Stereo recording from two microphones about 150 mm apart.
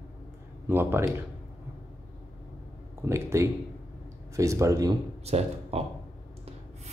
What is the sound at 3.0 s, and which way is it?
Speech, 20° right (ahead or behind).